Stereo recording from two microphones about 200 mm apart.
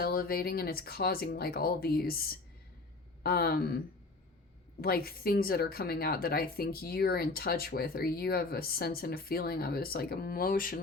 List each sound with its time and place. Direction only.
0.0 s a woman's voice: 50° left (ahead or behind)